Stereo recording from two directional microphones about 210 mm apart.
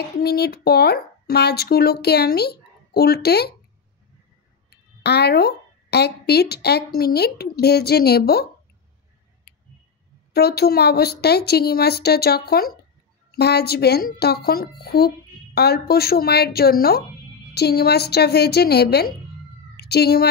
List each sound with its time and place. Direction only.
0.2 s a woman's voice: 50° left (ahead or behind)
4.6 s a woman's voice: 50° left (ahead or behind)
10.3 s a woman's voice: 50° left (ahead or behind)